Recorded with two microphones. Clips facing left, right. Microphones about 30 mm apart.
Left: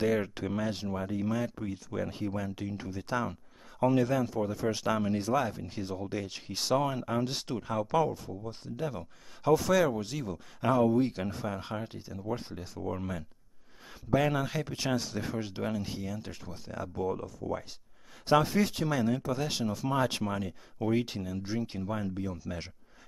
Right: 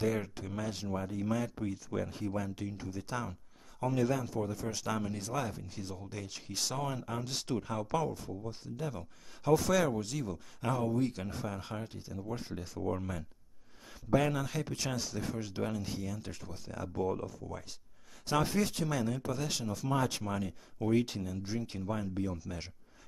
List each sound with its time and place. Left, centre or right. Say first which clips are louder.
0.0 s speech: left 5 dB; left
1.6 s speech: even; right
2.0 s speech: left 2 dB; left
4.3 s speech: left 5 dB; centre
12.5 s speech: even; centre
14.1 s speech: left 2 dB; centre
18.3 s speech: left 5 dB; left